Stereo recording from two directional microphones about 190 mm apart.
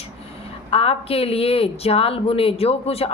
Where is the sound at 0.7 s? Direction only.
30° left (ahead or behind).